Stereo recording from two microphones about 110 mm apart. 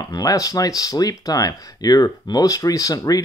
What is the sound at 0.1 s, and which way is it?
Speech, 35° left (ahead or behind).